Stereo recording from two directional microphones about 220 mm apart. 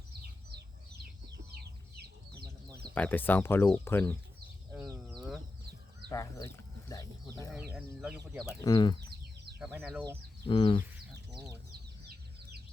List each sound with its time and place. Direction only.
2.9 s speech: 10° left (ahead or behind)
4.7 s livestock: 5° right (ahead or behind)
6.1 s livestock: 15° left (ahead or behind)
7.7 s speech: 10° right (ahead or behind)
8.6 s speech: 20° left (ahead or behind)
9.6 s speech: 5° right (ahead or behind)
10.5 s speech: 25° left (ahead or behind)
11.1 s a sound: 15° right (ahead or behind)